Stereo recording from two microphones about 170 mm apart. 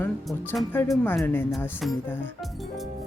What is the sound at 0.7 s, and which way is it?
Speech, 10° left (ahead or behind).